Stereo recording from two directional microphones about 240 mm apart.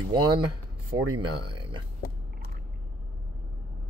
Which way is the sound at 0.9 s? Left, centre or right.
Right.